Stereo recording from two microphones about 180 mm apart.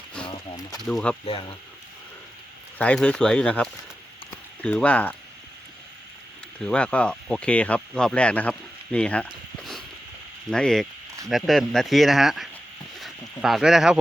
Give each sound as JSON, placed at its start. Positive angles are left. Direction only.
{"t": 0.3, "sound": "a sound", "side_deg": 20}
{"t": 0.8, "sound": "speech", "side_deg": 5}
{"t": 1.2, "sound": "speech", "side_deg": 30}
{"t": 2.7, "sound": "speech", "side_deg": 5}
{"t": 4.3, "sound": "a sound", "side_deg": 5}
{"t": 6.6, "sound": "speech", "side_deg": 5}